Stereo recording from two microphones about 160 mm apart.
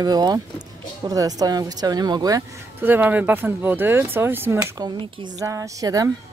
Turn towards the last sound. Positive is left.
turn(degrees=-20)  # may be behind; listen again after turning